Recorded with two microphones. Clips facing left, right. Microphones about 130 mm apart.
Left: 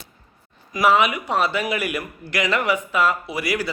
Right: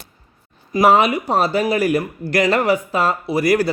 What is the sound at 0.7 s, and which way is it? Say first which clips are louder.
Speech: right 4 dB; 35° right (ahead or behind).